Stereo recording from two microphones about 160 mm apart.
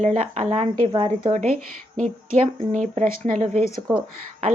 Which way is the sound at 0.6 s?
30° right (ahead or behind).